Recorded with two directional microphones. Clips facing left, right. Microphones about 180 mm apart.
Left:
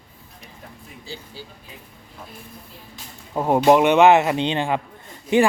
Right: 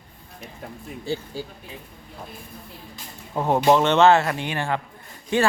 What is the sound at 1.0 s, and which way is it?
Speech, 55° right (ahead or behind).